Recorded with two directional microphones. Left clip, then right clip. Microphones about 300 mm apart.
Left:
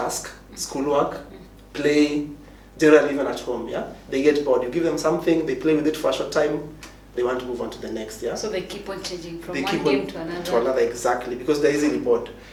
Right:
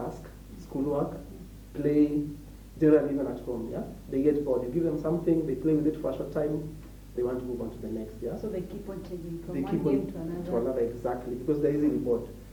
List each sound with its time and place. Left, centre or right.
0.0 s a sound: centre
0.7 s speech: centre
3.4 s speech: left
3.7 s speech: centre